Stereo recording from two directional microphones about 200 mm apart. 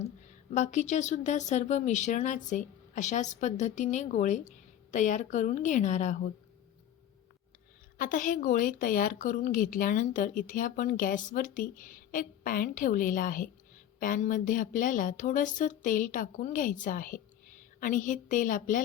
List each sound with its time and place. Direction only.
0.5 s speech: 35° left (ahead or behind)
7.9 s a woman's voice: 40° left (ahead or behind)